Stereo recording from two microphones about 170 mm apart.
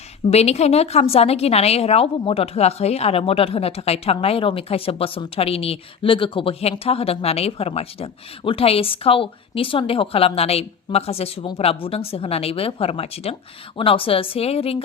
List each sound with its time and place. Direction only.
0.3 s a woman's voice: 40° left (ahead or behind)